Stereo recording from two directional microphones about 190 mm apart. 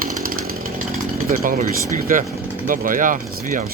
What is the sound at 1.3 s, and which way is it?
Speech, 45° right (ahead or behind).